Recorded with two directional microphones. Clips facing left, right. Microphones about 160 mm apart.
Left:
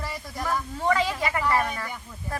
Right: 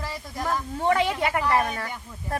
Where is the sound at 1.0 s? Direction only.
60° right (ahead or behind).